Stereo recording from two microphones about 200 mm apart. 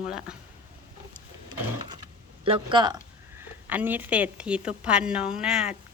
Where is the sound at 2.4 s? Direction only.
25° right (ahead or behind).